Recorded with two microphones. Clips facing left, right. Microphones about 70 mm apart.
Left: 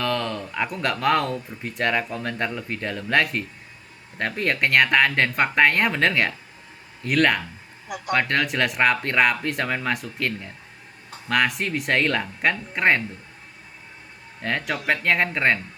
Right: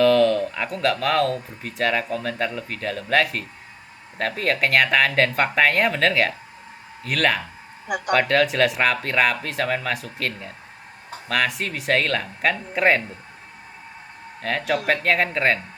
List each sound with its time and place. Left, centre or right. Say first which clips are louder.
0.0 s speech: right 9 dB; centre
7.9 s speech: right 6 dB; right
8.1 s speech: right 3 dB; centre
14.4 s speech: right 2 dB; centre